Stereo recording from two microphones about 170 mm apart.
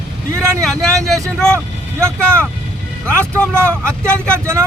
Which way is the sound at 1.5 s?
15° right (ahead or behind).